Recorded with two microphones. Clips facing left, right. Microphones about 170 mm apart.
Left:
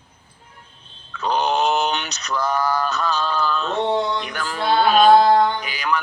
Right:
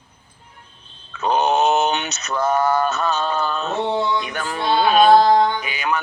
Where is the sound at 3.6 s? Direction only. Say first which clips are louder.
Even; 5° right (ahead or behind).